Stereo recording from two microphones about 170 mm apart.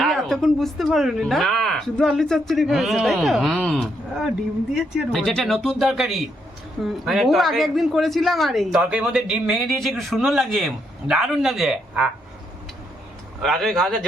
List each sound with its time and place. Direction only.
0.0 s a woman's voice: centre (ahead or behind)
13.4 s a woman's voice: centre (ahead or behind)